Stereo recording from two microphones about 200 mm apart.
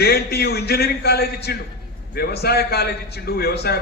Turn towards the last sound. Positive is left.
turn(degrees=55)  # may be behind; listen again after turning